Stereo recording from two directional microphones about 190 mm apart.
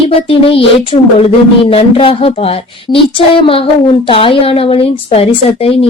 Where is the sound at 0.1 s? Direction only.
30° left (ahead or behind).